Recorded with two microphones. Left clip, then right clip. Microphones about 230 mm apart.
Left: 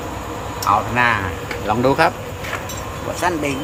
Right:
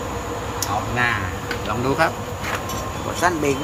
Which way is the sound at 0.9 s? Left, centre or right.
Centre.